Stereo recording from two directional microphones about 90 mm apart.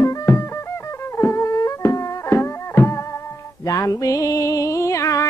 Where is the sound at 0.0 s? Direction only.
35° left (ahead or behind).